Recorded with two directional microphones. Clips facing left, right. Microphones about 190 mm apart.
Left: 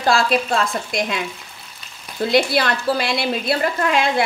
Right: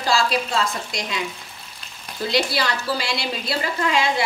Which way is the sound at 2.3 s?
55° left (ahead or behind).